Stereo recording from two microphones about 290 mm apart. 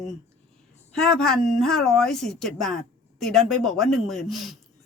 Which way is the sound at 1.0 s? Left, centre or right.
Centre.